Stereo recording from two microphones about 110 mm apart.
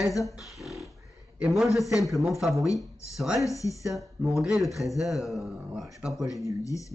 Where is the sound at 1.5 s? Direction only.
Centre (ahead or behind).